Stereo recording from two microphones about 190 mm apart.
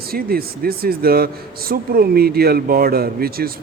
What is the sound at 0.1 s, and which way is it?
A man's voice, 50° right (ahead or behind).